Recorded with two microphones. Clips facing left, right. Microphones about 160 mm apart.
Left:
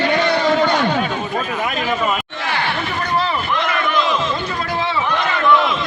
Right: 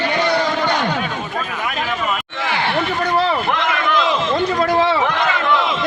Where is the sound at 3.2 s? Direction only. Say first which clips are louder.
Right 1 dB; 70° right (ahead or behind).